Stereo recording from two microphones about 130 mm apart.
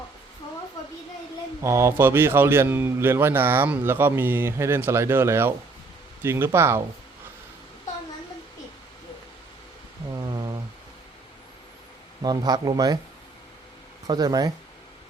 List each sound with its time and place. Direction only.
1.6 s a man's voice: 20° right (ahead or behind)
10.2 s a sound: 25° right (ahead or behind)
12.2 s speech: 30° right (ahead or behind)
14.1 s speech: 30° right (ahead or behind)